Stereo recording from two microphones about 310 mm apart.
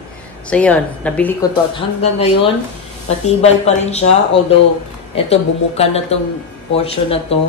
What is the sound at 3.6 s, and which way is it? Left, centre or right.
Speech, left.